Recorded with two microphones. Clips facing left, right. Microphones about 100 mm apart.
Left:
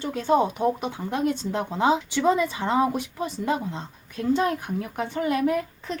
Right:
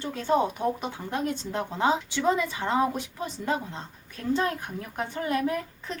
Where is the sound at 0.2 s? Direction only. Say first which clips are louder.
Left 3 dB; 25° left (ahead or behind).